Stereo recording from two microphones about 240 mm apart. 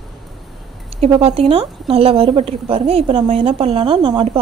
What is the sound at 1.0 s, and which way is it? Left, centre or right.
Speech, right.